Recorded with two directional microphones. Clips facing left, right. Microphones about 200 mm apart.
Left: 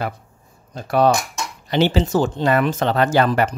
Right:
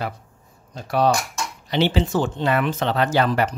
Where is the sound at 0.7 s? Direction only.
55° left (ahead or behind).